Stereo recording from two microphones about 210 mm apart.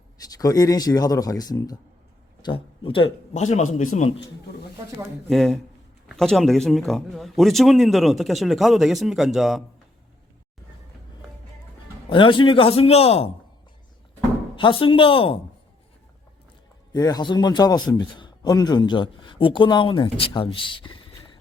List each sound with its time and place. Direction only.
0.3 s speech: 15° left (ahead or behind)
3.4 s a man's voice: 35° left (ahead or behind)
5.3 s speech: centre (ahead or behind)
12.0 s a man's voice: 25° left (ahead or behind)
14.5 s a man's voice: 25° left (ahead or behind)
16.9 s a man's voice: 20° left (ahead or behind)